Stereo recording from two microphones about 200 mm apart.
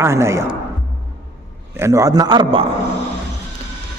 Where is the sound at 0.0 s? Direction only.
15° right (ahead or behind).